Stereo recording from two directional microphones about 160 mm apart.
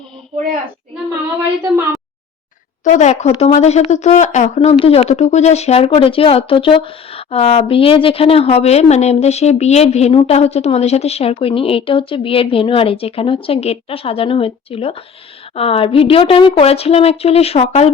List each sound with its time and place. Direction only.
2.8 s speech: 45° left (ahead or behind)